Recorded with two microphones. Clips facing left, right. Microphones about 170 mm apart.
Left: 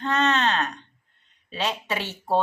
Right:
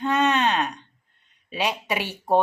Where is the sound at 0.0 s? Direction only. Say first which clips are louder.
Right 2 dB; 10° right (ahead or behind).